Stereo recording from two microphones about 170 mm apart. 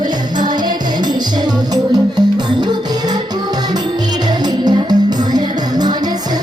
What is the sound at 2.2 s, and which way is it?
Music, 25° right (ahead or behind).